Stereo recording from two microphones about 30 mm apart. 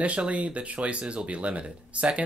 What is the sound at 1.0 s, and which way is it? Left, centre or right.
Speech, right.